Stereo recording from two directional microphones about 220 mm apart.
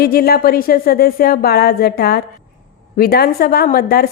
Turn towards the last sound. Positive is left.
turn(degrees=45)  # may be behind; listen again after turning